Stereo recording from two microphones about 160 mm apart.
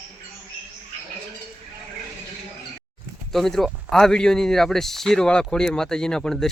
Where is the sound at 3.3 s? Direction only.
Centre (ahead or behind).